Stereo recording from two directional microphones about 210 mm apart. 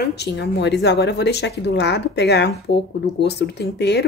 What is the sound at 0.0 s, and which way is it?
Speech, 50° left (ahead or behind).